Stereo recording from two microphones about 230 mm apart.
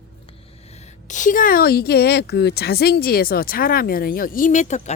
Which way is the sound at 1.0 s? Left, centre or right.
Left.